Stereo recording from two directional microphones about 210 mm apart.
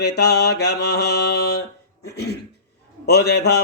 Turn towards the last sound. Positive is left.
turn(degrees=50)  # may be behind; listen again after turning